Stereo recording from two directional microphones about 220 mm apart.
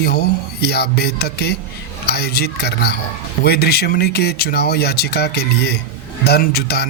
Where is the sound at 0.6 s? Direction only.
45° left (ahead or behind).